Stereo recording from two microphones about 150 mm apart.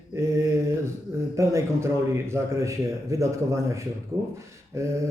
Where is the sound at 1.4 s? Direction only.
20° right (ahead or behind).